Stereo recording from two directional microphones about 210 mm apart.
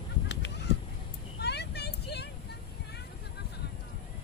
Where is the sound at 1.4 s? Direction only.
50° left (ahead or behind).